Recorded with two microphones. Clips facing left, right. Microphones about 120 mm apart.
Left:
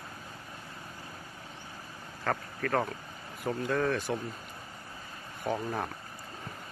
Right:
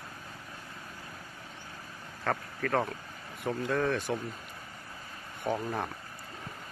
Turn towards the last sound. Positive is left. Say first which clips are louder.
# even
turn(degrees=0)  # may be behind; listen again after turning